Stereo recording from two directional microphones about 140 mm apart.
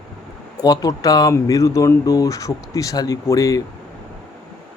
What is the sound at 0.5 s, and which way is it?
Speech, 25° left (ahead or behind).